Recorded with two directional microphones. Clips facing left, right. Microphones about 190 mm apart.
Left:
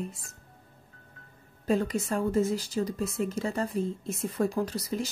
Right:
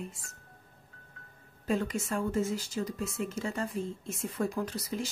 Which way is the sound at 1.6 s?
35° left (ahead or behind).